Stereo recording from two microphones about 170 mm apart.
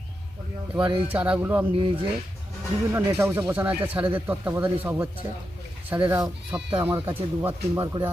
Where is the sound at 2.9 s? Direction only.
15° right (ahead or behind).